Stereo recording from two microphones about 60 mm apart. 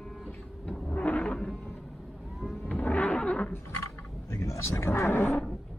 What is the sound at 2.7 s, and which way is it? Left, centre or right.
Wild animals, left.